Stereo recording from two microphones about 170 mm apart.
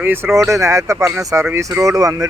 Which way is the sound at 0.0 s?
10° right (ahead or behind).